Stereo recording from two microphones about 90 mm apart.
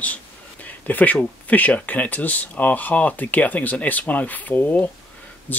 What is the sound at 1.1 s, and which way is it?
Speech, 15° left (ahead or behind).